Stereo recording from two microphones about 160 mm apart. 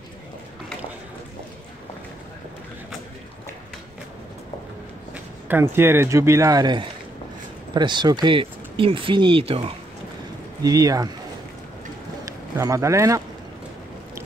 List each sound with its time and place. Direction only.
5.1 s speech: 15° right (ahead or behind); by 9.8 s 35° right (ahead or behind)
10.6 s speech: 20° right (ahead or behind)
12.3 s speech: 20° right (ahead or behind)